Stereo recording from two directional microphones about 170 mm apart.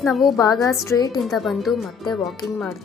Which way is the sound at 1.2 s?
Centre (ahead or behind).